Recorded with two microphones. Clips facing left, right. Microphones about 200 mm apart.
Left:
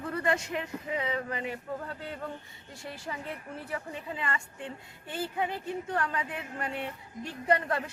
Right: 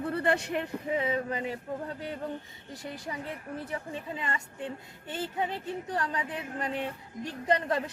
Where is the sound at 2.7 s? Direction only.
20° right (ahead or behind).